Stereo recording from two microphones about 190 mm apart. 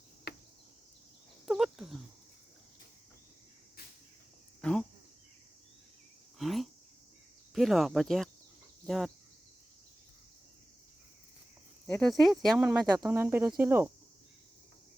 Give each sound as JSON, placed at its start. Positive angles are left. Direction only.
{"t": 0.3, "sound": "cricket", "side_deg": 55}
{"t": 1.5, "sound": "a sound", "side_deg": 0}
{"t": 4.6, "sound": "cricket", "side_deg": 5}
{"t": 6.4, "sound": "cricket", "side_deg": 0}
{"t": 7.5, "sound": "speech", "side_deg": 0}
{"t": 11.9, "sound": "speech", "side_deg": 0}